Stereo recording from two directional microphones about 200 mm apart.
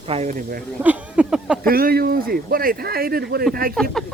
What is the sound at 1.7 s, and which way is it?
Speech, 50° right (ahead or behind).